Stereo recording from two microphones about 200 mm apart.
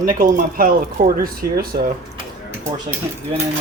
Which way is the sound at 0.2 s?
45° right (ahead or behind).